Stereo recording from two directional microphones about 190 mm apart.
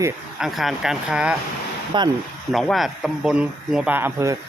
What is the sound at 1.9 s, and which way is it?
Speech, 25° right (ahead or behind).